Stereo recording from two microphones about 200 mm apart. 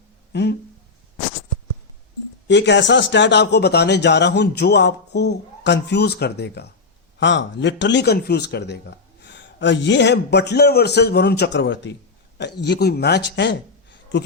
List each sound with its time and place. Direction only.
0.3 s speech: 60° left (ahead or behind)
2.5 s speech: 60° left (ahead or behind)